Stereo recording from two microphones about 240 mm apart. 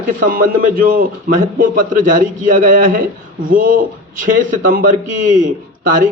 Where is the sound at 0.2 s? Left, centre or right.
Right.